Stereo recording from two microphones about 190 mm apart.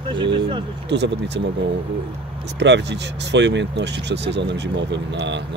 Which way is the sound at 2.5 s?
65° right (ahead or behind).